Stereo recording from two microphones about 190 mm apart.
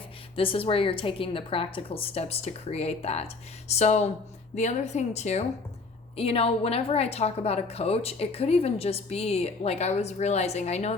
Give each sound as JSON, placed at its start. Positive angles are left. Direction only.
{"t": 0.3, "sound": "a woman's voice", "side_deg": 30}